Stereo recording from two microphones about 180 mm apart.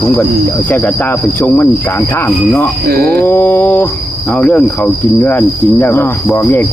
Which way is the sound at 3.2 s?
10° left (ahead or behind).